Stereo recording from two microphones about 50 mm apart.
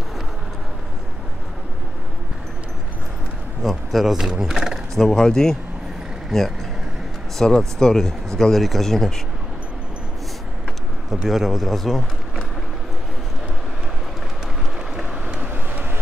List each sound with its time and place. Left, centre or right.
3.6 s speech: centre
11.2 s speech: centre
15.5 s vehicle: right